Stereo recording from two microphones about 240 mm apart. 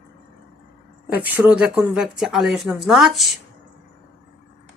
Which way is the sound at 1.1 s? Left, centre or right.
Centre.